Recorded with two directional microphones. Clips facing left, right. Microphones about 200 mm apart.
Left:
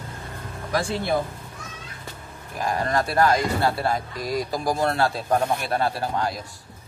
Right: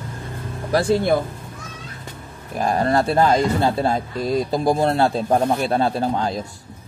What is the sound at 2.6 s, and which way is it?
Speech, 30° right (ahead or behind).